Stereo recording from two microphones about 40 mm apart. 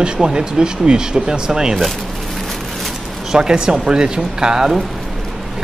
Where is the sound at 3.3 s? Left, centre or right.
Right.